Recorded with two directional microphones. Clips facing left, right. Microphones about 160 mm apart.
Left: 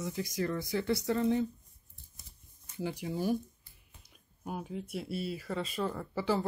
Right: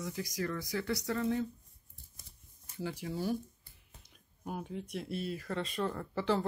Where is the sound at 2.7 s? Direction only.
15° left (ahead or behind).